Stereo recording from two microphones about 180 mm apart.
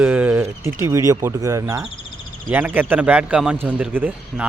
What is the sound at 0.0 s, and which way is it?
A man's voice, 10° right (ahead or behind).